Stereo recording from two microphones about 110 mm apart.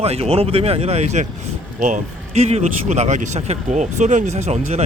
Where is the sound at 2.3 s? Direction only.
75° right (ahead or behind).